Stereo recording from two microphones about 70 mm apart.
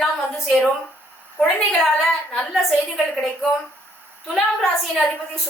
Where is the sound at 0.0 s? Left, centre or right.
Centre.